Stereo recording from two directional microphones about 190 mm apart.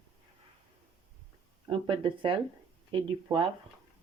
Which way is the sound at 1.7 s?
25° right (ahead or behind).